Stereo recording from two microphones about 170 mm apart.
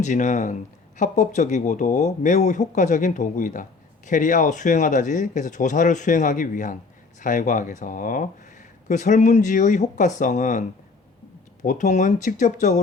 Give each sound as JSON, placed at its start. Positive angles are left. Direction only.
{"t": 0.0, "sound": "speech", "side_deg": 45}
{"t": 11.6, "sound": "speech", "side_deg": 45}